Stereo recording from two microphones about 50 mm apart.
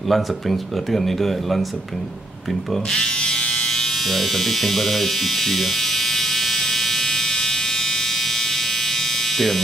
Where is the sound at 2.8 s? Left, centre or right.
Centre.